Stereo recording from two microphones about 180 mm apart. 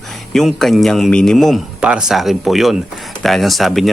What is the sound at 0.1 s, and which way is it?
A man's voice, centre (ahead or behind).